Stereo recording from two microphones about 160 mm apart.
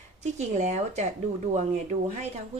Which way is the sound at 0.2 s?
45° right (ahead or behind).